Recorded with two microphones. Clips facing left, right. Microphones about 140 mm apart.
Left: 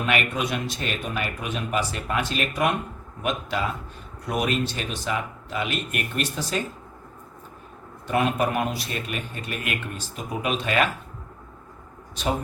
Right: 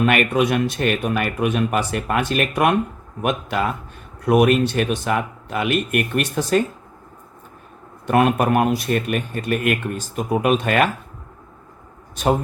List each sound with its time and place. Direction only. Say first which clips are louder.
0.0 s speech: right 8 dB; 55° right (ahead or behind)
8.0 s speech: right 6 dB; 60° right (ahead or behind)